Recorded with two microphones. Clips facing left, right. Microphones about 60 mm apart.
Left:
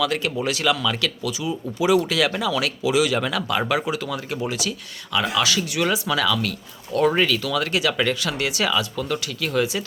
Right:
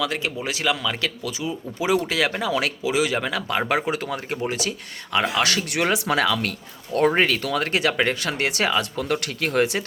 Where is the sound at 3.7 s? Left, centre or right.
Right.